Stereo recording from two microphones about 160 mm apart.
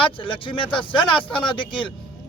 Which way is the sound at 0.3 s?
30° left (ahead or behind).